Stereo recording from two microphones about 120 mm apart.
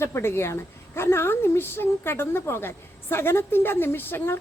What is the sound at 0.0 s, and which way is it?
A woman's voice, 20° left (ahead or behind).